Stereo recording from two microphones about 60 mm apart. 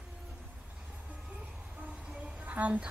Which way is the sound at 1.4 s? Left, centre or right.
Centre.